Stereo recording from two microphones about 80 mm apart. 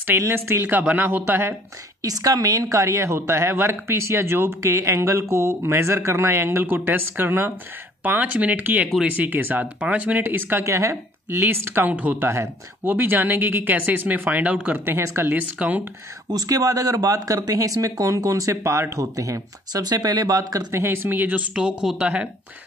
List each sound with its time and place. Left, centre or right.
0.3 s speech: right
2.0 s speech: right
10.6 s speech: right; by 15.0 s centre
15.0 s speech: right
15.3 s speech: centre
16.3 s speech: right; by 22.3 s centre